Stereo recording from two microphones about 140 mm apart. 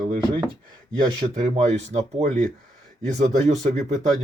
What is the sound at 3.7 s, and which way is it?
Speech, 55° right (ahead or behind).